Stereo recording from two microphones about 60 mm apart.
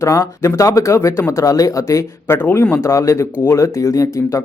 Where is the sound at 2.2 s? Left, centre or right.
Left.